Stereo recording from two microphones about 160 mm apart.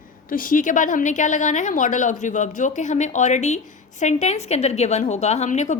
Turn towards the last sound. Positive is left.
turn(degrees=45)  # may be behind; listen again after turning